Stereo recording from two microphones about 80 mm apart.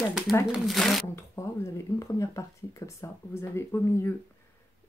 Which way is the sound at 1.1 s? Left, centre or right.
Left.